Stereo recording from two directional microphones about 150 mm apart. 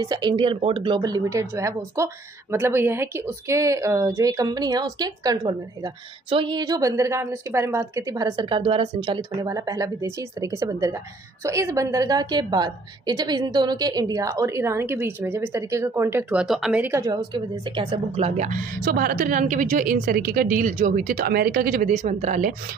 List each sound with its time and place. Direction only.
0.0 s a woman's voice: 25° right (ahead or behind); by 18.6 s 55° right (ahead or behind)
18.9 s speech: 85° right
21.9 s speech: 50° right (ahead or behind)